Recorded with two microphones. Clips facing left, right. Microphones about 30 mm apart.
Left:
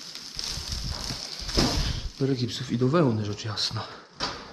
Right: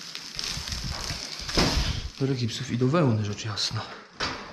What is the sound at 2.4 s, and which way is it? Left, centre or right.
Speech, centre.